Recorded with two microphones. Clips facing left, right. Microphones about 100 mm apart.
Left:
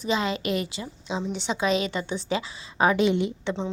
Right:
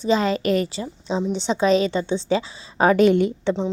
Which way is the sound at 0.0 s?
35° right (ahead or behind).